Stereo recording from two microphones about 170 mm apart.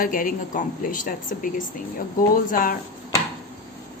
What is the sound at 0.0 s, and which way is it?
Speech, 55° left (ahead or behind).